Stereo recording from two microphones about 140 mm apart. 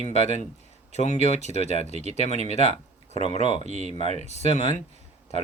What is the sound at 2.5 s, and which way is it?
Speech, 50° left (ahead or behind).